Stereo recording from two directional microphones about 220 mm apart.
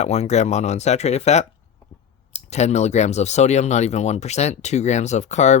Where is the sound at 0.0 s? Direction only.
30° left (ahead or behind).